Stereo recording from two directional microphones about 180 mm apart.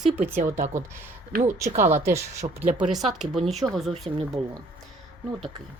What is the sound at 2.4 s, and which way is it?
Speech, 35° right (ahead or behind).